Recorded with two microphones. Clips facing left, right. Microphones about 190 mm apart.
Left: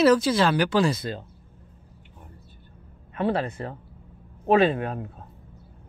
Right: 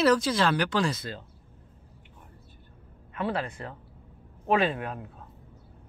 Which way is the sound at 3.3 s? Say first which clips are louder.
Left 6 dB; 25° left (ahead or behind).